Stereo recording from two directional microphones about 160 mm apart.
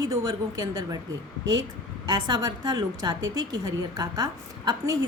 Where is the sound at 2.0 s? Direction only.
25° right (ahead or behind).